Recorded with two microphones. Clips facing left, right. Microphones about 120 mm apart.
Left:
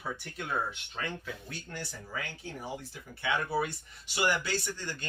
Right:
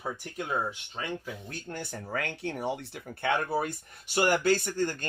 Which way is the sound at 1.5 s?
45° right (ahead or behind).